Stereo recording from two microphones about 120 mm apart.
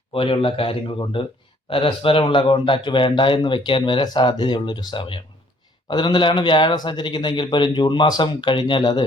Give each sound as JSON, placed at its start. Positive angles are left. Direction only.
{"t": 0.1, "sound": "a man's voice", "side_deg": 50}